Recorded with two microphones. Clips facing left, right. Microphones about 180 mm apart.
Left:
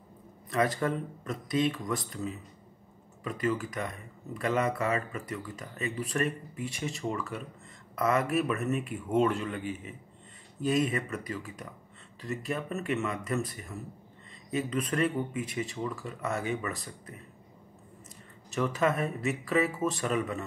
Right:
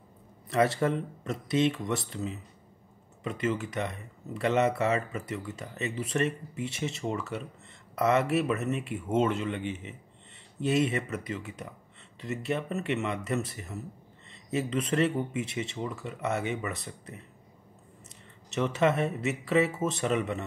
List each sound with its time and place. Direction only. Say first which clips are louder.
0.5 s speech: right 3 dB; 25° right (ahead or behind)
18.5 s speech: right 2 dB; 25° right (ahead or behind)